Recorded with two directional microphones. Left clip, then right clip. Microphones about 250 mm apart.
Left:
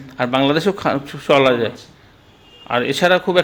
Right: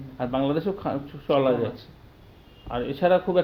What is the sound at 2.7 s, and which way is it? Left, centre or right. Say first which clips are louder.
Speech: left 7 dB; left.